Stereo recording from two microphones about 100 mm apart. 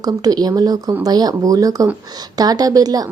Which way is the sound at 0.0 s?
40° right (ahead or behind).